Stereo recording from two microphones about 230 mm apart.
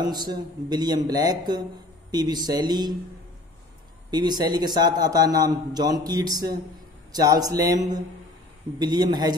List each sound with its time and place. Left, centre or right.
0.0 s speech: centre
4.1 s speech: centre